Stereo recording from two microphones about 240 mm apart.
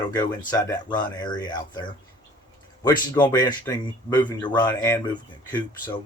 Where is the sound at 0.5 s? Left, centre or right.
Centre.